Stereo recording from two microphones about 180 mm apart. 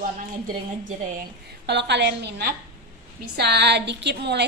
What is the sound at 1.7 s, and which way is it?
A woman's voice, 70° right (ahead or behind).